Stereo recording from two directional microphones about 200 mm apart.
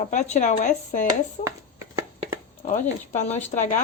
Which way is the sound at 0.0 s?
35° left (ahead or behind).